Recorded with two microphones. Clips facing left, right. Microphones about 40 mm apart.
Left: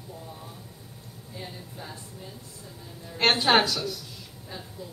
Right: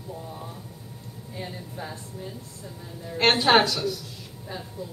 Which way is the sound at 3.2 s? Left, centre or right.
Centre.